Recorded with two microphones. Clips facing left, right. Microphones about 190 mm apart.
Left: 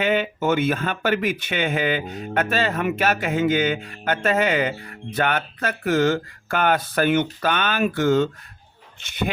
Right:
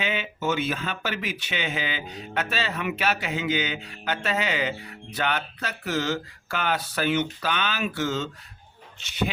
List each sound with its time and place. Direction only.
0.0 s speech: 50° left (ahead or behind)